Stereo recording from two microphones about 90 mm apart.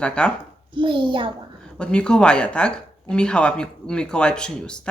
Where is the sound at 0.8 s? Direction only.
65° right (ahead or behind).